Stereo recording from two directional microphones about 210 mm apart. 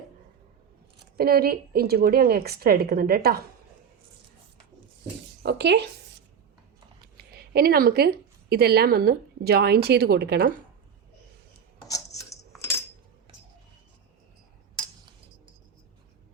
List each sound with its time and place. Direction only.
1.1 s a woman's voice: 45° right (ahead or behind)
5.4 s speech: 55° right (ahead or behind)
7.2 s a woman's voice: 50° right (ahead or behind)
11.9 s scissors: 15° left (ahead or behind)